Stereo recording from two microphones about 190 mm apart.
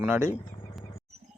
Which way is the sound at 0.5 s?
25° left (ahead or behind).